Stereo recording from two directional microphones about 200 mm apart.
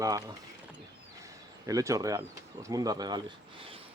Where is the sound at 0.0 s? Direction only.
20° right (ahead or behind).